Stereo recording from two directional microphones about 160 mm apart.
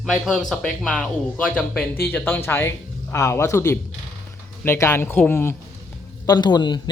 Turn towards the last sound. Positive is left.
turn(degrees=25)  # may be behind; listen again after turning